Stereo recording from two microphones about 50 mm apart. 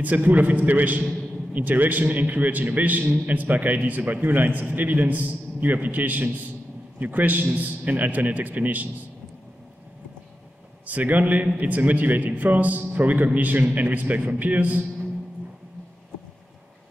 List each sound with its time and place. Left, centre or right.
0.0 s a man's voice: right
10.9 s a man's voice: right